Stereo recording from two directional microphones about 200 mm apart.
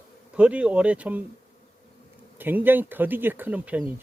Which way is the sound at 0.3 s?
5° right (ahead or behind).